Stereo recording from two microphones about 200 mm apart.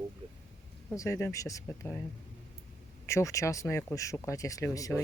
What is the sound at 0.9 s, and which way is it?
Speech, 15° left (ahead or behind).